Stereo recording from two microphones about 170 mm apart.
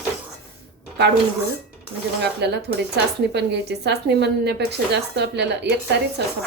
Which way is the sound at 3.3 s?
80° right.